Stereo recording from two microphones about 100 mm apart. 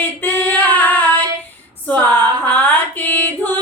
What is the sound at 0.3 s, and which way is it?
Female singing, 20° left (ahead or behind).